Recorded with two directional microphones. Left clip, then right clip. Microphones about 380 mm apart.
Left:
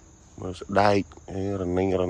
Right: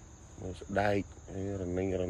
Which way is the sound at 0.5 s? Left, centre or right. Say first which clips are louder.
Left 10 dB; centre.